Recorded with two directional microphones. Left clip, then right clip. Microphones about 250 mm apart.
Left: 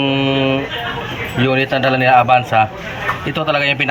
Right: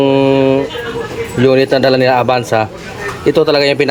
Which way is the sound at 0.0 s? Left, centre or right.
Centre.